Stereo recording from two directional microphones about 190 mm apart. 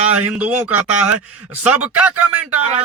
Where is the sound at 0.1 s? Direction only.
5° right (ahead or behind).